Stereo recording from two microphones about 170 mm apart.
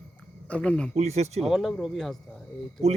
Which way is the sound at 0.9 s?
40° right (ahead or behind).